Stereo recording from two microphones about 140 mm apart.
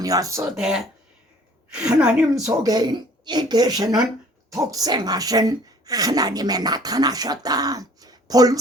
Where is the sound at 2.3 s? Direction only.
25° right (ahead or behind).